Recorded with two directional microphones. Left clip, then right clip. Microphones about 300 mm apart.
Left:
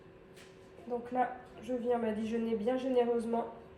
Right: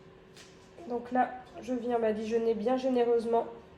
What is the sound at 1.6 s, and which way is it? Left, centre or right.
Speech, right.